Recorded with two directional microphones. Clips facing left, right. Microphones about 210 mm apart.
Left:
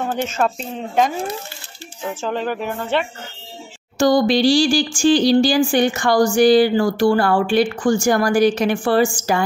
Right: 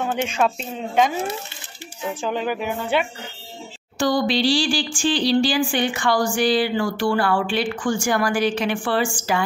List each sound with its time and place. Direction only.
0.4 s speech: 5° right (ahead or behind)
2.2 s speech: 5° right (ahead or behind)
4.0 s speech: 45° left (ahead or behind)